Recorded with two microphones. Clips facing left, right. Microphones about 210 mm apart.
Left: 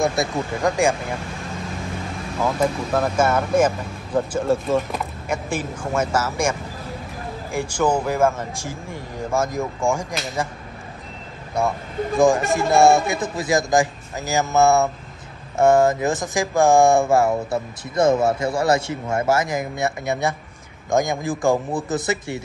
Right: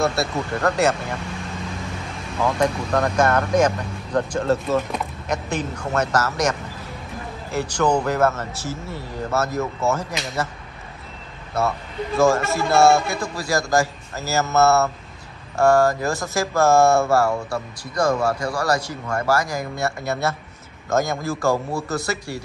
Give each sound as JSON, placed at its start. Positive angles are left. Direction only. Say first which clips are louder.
{"t": 0.0, "sound": "speech", "louder": "left 1 dB", "side_deg": 15}
{"t": 2.4, "sound": "speech", "louder": "even", "side_deg": 5}
{"t": 7.5, "sound": "speech", "louder": "even", "side_deg": 10}
{"t": 11.6, "sound": "speech", "louder": "left 1 dB", "side_deg": 15}